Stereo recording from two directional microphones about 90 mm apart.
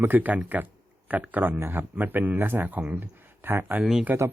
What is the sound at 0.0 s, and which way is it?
Speech, 20° right (ahead or behind).